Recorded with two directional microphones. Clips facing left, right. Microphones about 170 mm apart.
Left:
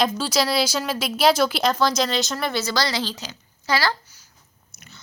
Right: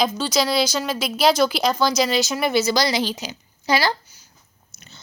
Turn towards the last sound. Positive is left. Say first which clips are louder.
# right 2 dB
turn(degrees=-15)  # may be behind; listen again after turning